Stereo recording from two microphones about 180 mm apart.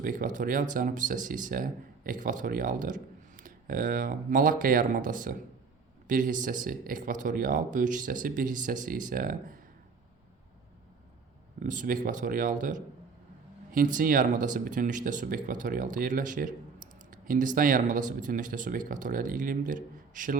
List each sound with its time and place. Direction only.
0.0 s speech: 50° right (ahead or behind)
11.6 s speech: 45° right (ahead or behind)